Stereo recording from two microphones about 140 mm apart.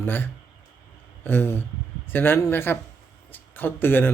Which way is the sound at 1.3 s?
15° left (ahead or behind).